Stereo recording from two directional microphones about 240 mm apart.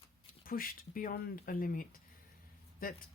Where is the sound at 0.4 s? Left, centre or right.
Left.